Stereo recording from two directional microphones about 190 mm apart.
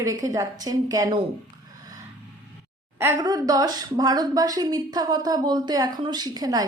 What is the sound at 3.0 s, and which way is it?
A woman's voice, 15° right (ahead or behind).